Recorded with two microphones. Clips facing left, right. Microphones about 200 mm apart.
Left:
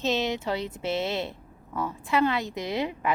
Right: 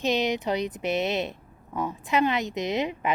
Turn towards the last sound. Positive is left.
turn(degrees=-20)  # may be behind; listen again after turning